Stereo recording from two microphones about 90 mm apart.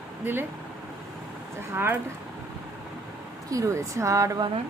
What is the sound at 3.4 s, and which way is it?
Speech, 35° right (ahead or behind).